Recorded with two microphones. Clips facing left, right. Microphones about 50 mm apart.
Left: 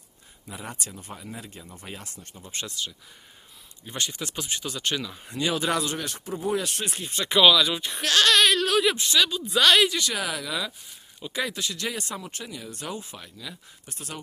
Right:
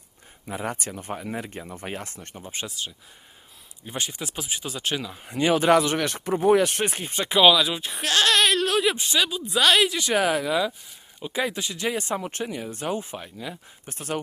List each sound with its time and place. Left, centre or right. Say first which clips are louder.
0.4 s speech: right 7 dB; right
2.4 s speech: right 1 dB; centre
3.8 s speech: even; centre
5.4 s speech: right 7 dB; right
6.6 s speech: right 7 dB; right
7.3 s speech: right 1 dB; centre
9.0 s speech: left 1 dB; centre
9.4 s speech: even; centre
10.1 s speech: right 8 dB; right
11.2 s speech: right 3 dB; centre
12.2 s speech: right 7 dB; right